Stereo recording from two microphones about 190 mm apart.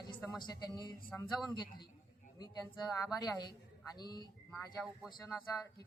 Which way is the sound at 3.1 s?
20° left (ahead or behind).